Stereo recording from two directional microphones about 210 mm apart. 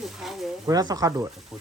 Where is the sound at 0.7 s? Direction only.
20° right (ahead or behind).